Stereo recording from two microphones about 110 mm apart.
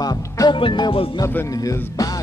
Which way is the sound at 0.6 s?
50° left (ahead or behind).